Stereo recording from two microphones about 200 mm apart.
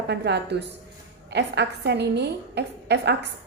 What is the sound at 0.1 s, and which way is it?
A woman's voice, 55° right (ahead or behind).